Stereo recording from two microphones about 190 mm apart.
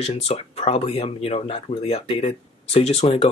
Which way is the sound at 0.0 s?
35° left (ahead or behind).